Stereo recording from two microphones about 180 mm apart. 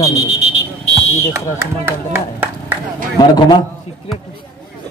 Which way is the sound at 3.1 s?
25° left (ahead or behind).